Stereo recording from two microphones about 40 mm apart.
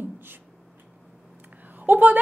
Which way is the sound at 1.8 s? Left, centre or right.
Right.